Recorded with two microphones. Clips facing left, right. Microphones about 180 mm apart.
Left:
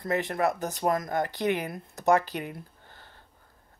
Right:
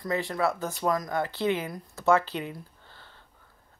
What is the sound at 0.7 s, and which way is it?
Speech, 50° left (ahead or behind).